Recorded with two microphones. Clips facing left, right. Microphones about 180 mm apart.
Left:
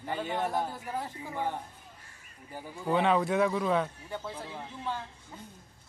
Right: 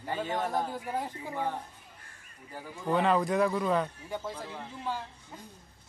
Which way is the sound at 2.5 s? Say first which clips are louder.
Even; 10° left (ahead or behind).